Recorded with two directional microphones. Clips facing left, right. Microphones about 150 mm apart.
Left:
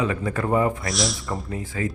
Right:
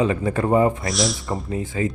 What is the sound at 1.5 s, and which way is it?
Speech, 25° right (ahead or behind).